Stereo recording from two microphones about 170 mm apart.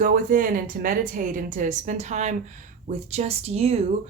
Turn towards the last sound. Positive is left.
turn(degrees=-35)  # may be behind; listen again after turning